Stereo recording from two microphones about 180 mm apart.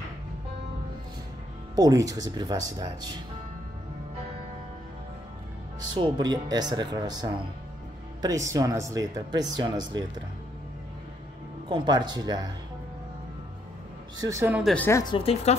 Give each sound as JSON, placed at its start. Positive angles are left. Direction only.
{"t": 2.0, "sound": "speech", "side_deg": -20}
{"t": 5.9, "sound": "speech", "side_deg": -25}
{"t": 11.7, "sound": "speech", "side_deg": -25}
{"t": 14.1, "sound": "speech", "side_deg": -20}
{"t": 14.6, "sound": "speech", "side_deg": 5}
{"t": 14.9, "sound": "speech", "side_deg": 15}
{"t": 15.1, "sound": "speech", "side_deg": 30}